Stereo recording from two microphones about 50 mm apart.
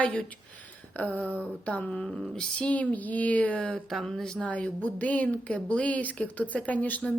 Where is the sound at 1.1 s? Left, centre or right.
Right.